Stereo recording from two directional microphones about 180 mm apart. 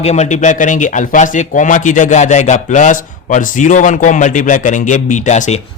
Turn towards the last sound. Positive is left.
turn(degrees=40)  # may be behind; listen again after turning